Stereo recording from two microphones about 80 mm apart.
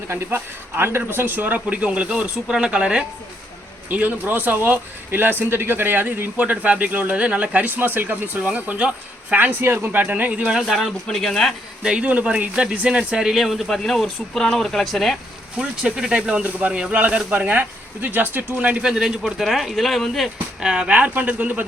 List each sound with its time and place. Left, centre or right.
0.1 s speech: right; by 11.5 s centre
11.8 s speech: centre
15.5 s speech: centre